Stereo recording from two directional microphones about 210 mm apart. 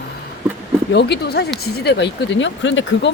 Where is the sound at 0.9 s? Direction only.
50° left (ahead or behind).